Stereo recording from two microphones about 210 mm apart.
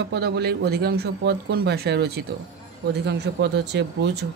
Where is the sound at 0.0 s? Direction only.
55° right (ahead or behind).